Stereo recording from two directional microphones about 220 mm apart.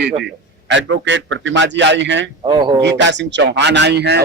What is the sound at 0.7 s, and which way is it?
A man's voice, 55° right (ahead or behind).